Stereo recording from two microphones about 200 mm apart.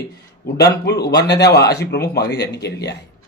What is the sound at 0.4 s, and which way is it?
A man's voice, 55° left (ahead or behind).